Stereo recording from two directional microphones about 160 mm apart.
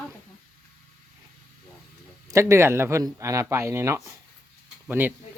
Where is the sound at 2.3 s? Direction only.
15° right (ahead or behind).